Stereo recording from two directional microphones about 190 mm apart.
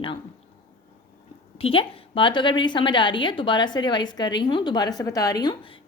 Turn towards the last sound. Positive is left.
turn(degrees=25)  # may be behind; listen again after turning